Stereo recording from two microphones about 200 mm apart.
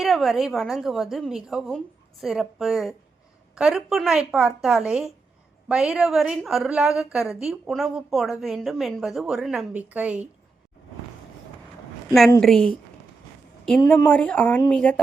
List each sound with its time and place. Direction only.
0.0 s a woman's voice: centre (ahead or behind)
12.4 s a woman's voice: centre (ahead or behind)